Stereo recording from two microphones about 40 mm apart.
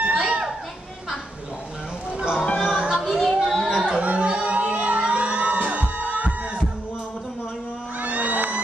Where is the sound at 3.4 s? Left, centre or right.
Centre.